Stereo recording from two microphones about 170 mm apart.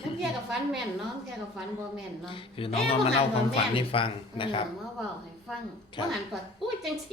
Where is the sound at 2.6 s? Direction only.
35° left (ahead or behind).